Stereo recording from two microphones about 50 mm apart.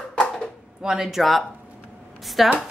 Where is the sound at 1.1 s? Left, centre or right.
Centre.